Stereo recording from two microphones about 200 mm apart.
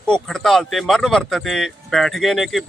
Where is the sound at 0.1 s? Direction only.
Centre (ahead or behind).